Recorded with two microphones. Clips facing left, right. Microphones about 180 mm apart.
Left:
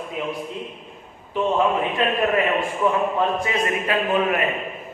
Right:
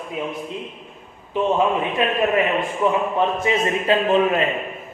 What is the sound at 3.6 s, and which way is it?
Speech, 25° right (ahead or behind).